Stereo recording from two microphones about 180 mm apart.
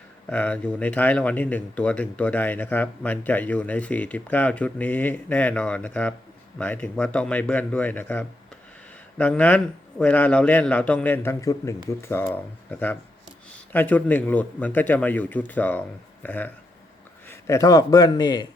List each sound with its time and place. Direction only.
0.3 s a man's voice: 5° left (ahead or behind); by 18.4 s 25° left (ahead or behind)